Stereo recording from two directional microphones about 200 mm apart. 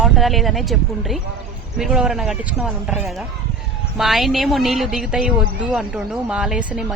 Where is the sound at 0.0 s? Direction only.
Centre (ahead or behind).